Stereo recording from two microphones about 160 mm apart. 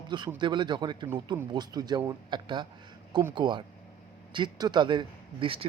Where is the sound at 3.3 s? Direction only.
30° right (ahead or behind).